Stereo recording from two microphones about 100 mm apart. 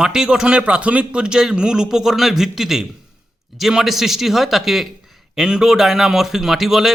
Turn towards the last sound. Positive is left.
turn(degrees=-5)  # may be behind; listen again after turning